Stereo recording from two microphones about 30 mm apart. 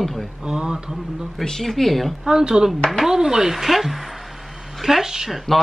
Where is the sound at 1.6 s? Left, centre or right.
Centre.